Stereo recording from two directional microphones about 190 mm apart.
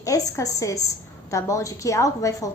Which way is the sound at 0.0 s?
15° left (ahead or behind).